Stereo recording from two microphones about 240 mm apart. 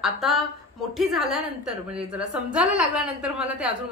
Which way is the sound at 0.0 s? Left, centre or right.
Centre.